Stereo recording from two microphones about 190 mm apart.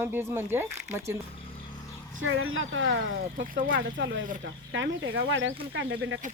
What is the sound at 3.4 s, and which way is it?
Speech, 45° right (ahead or behind).